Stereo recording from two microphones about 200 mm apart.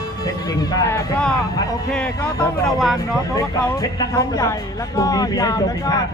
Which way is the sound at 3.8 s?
15° left (ahead or behind).